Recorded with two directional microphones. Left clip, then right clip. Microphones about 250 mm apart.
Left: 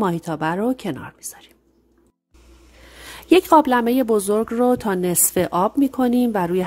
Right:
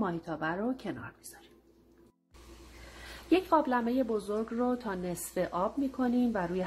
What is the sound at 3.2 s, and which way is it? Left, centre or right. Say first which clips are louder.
Speech: left 13 dB; left.